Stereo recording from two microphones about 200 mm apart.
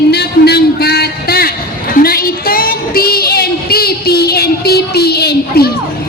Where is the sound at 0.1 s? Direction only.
55° left (ahead or behind).